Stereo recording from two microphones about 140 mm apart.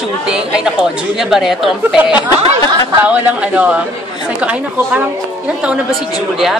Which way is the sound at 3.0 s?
10° right (ahead or behind).